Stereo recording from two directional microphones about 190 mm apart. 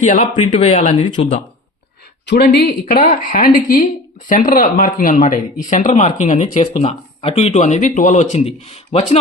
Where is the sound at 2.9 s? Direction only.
40° left (ahead or behind).